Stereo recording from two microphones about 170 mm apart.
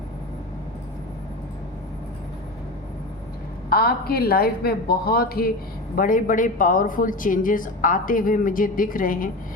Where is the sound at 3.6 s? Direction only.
65° left (ahead or behind).